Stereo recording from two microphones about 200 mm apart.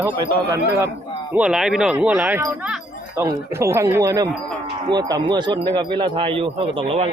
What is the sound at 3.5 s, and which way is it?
Speech, 15° right (ahead or behind).